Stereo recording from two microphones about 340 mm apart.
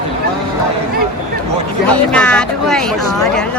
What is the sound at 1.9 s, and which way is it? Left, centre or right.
Speech, centre.